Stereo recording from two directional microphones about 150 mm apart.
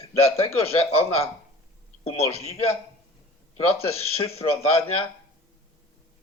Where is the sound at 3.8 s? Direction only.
40° left (ahead or behind).